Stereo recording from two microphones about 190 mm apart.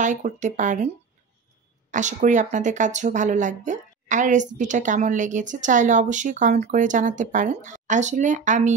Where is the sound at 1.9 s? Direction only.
40° right (ahead or behind).